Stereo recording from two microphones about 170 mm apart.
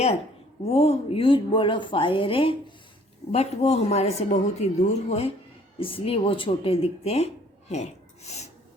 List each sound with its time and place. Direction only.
0.6 s a woman's voice: 35° left (ahead or behind)